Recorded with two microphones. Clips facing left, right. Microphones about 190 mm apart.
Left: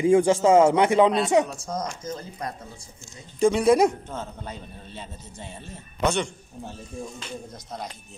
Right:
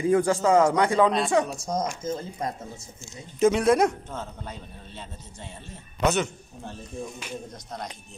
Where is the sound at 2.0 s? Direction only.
25° right (ahead or behind).